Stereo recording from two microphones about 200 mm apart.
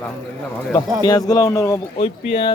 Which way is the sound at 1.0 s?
20° left (ahead or behind).